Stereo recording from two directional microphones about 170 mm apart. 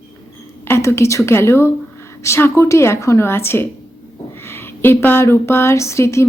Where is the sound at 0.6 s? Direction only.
15° left (ahead or behind).